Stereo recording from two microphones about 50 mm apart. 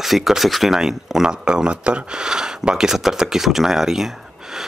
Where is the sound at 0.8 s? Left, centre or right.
Centre.